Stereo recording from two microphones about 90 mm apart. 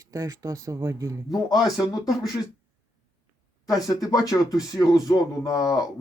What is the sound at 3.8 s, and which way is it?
Speech, 40° left (ahead or behind).